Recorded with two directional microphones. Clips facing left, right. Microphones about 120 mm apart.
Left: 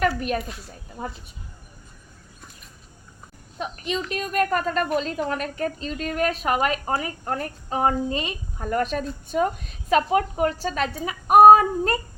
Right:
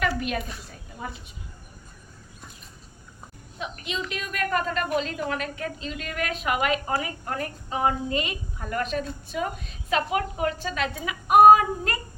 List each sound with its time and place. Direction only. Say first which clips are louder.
0.0 s a woman's voice: left 4 dB; 40° left (ahead or behind)
3.8 s a woman's voice: left 5 dB; 40° left (ahead or behind)